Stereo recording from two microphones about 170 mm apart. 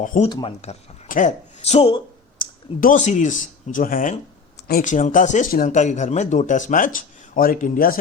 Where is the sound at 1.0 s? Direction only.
50° left (ahead or behind).